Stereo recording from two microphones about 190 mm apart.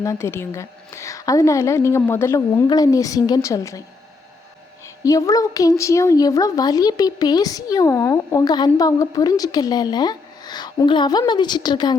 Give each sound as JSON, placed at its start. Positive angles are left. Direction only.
{"t": 0.0, "sound": "a woman's voice", "side_deg": 15}
{"t": 5.0, "sound": "a woman's voice", "side_deg": 20}